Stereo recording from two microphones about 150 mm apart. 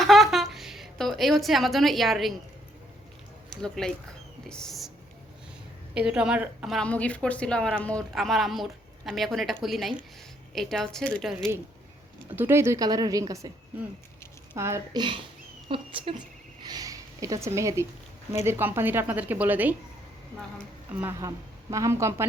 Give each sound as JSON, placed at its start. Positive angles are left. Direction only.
{"t": 0.0, "sound": "a sound", "side_deg": 0}
{"t": 3.5, "sound": "speech", "side_deg": 5}
{"t": 5.9, "sound": "a woman's voice", "side_deg": -5}
{"t": 6.7, "sound": "speech", "side_deg": 10}
{"t": 12.4, "sound": "a man's voice", "side_deg": -15}
{"t": 14.5, "sound": "a man's voice", "side_deg": -20}
{"t": 15.7, "sound": "speech", "side_deg": -35}
{"t": 16.6, "sound": "a woman's voice", "side_deg": -25}
{"t": 21.0, "sound": "a man's voice", "side_deg": -20}